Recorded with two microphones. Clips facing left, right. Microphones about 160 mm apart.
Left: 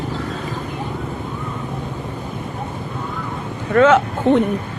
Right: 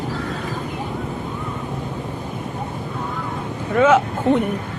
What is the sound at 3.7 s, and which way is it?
Speech, 10° right (ahead or behind).